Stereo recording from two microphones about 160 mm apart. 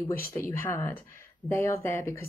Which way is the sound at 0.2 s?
15° left (ahead or behind).